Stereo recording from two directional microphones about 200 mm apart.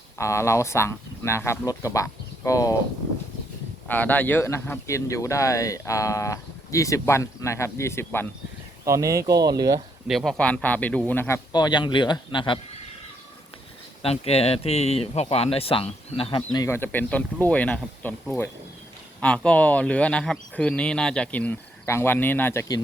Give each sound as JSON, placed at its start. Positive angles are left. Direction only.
{"t": 0.2, "sound": "speech", "side_deg": 15}
{"t": 3.8, "sound": "speech", "side_deg": 10}
{"t": 8.8, "sound": "speech", "side_deg": -15}
{"t": 10.1, "sound": "speech", "side_deg": 0}
{"t": 11.5, "sound": "speech", "side_deg": 20}
{"t": 14.0, "sound": "speech", "side_deg": 30}